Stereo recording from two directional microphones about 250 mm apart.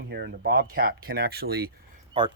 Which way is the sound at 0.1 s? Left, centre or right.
Right.